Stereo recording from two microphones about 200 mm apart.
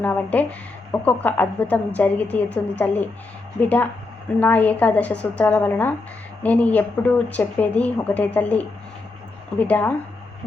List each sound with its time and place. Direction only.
0.0 s speech: 10° left (ahead or behind)
4.4 s speech: 10° left (ahead or behind)